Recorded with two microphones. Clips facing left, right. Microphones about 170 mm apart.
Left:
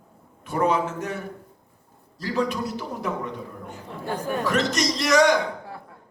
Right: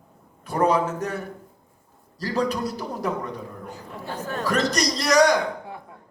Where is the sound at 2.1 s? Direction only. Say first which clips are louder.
Right 1 dB; 35° right (ahead or behind).